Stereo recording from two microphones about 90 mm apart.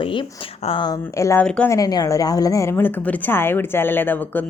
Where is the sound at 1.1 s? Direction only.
35° left (ahead or behind).